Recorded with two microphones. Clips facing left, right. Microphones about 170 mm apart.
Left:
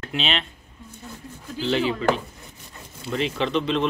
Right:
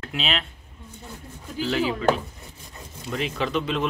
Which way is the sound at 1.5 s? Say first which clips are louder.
Left 1 dB; centre (ahead or behind).